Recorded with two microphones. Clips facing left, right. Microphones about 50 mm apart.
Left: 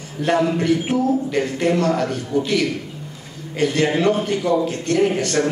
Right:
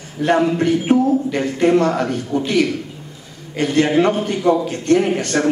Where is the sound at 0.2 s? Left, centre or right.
Right.